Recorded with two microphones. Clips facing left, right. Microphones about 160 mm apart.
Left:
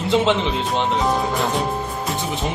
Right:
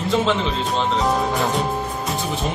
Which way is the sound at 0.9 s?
Centre (ahead or behind).